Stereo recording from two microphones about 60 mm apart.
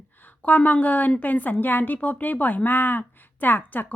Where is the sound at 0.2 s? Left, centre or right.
Left.